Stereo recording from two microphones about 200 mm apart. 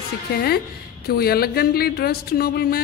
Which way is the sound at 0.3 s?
50° left (ahead or behind).